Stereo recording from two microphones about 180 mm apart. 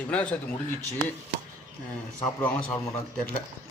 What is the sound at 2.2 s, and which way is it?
Speech, 10° left (ahead or behind).